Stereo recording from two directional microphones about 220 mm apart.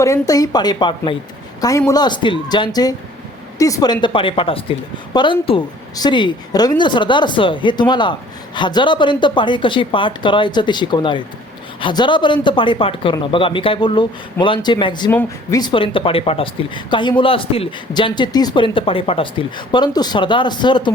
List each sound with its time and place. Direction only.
0.0 s a woman's voice: 15° left (ahead or behind)